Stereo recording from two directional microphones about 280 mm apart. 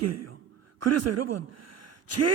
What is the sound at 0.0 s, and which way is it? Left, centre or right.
A man's voice, right.